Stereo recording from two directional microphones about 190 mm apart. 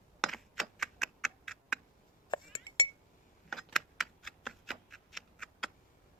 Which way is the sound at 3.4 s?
Centre (ahead or behind).